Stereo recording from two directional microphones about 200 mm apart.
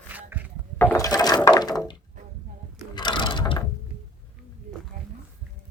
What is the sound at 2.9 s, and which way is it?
Ratchet, 25° left (ahead or behind).